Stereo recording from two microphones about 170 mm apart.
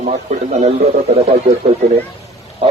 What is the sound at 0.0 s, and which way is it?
A man's voice, 45° right (ahead or behind).